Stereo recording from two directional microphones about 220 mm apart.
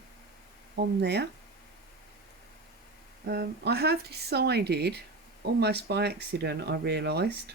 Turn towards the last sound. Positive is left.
turn(degrees=-50)  # may be behind; listen again after turning